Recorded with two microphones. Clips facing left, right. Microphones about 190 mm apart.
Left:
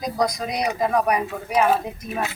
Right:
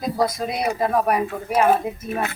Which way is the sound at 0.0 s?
5° right (ahead or behind).